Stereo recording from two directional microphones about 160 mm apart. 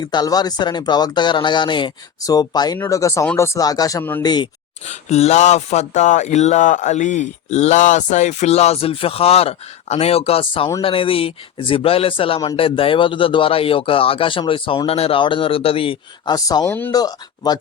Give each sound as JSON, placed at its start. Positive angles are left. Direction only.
{"t": 0.0, "sound": "speech", "side_deg": 25}
{"t": 4.9, "sound": "speech", "side_deg": 45}
{"t": 16.3, "sound": "speech", "side_deg": 20}